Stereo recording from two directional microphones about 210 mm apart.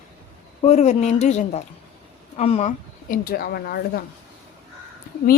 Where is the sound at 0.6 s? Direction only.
35° left (ahead or behind).